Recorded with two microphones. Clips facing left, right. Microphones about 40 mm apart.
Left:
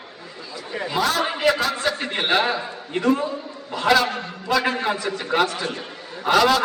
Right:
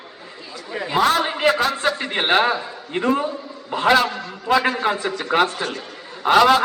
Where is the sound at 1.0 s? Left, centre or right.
Right.